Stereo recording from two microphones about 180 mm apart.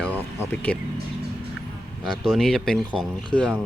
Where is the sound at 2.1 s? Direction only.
Centre (ahead or behind).